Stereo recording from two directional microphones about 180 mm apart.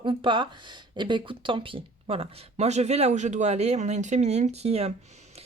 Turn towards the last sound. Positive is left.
turn(degrees=-35)  # may be behind; listen again after turning